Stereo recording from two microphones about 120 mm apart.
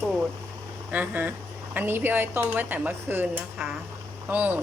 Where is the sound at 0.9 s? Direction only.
15° right (ahead or behind).